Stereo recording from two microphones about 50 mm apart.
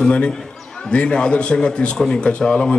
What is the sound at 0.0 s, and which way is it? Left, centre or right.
A man's voice, centre.